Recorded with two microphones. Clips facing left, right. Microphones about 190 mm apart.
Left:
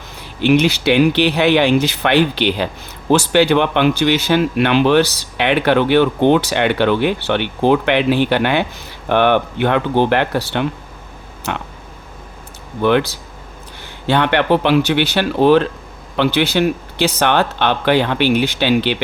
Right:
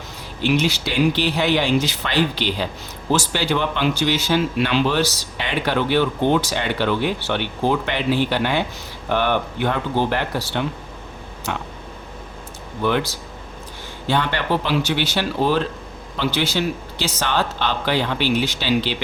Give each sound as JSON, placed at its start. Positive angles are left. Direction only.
{"t": 0.4, "sound": "speech", "side_deg": 60}
{"t": 12.8, "sound": "speech", "side_deg": 65}